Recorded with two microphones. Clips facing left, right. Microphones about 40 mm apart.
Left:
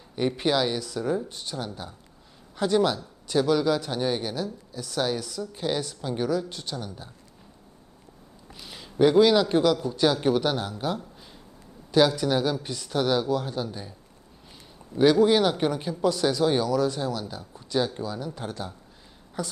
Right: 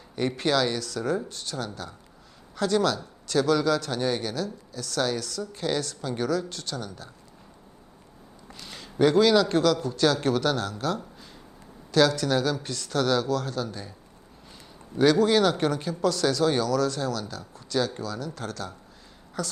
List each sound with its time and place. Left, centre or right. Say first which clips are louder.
0.2 s speech: even; centre
8.5 s speech: left 2 dB; centre
14.9 s speech: left 1 dB; centre